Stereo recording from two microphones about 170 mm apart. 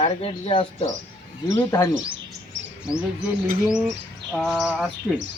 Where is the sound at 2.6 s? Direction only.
90° right.